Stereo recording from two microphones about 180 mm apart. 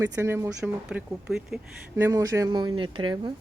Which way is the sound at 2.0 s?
15° right (ahead or behind).